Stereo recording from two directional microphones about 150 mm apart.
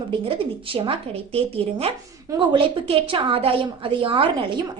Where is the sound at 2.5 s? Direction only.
35° right (ahead or behind).